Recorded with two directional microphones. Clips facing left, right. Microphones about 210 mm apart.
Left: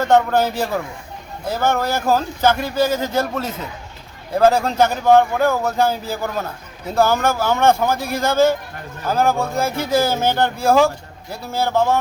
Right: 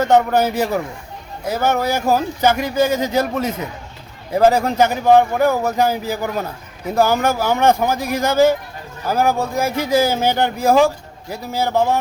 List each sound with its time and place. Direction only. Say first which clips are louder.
0.1 s speech: left 1 dB; 10° right (ahead or behind)